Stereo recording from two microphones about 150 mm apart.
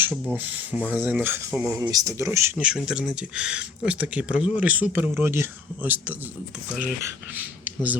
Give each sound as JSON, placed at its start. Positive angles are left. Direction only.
{"t": 0.0, "sound": "speech", "side_deg": -15}
{"t": 1.8, "sound": "speech", "side_deg": -25}
{"t": 2.6, "sound": "speech", "side_deg": -5}